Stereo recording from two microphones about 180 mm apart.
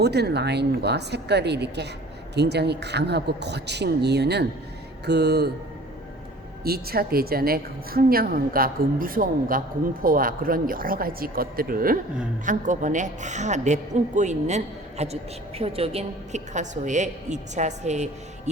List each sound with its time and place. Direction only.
0.0 s speech: 65° right (ahead or behind)
6.7 s a woman's voice: 60° right (ahead or behind); by 18.1 s 40° right (ahead or behind)